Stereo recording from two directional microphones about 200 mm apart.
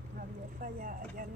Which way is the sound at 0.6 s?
45° right (ahead or behind).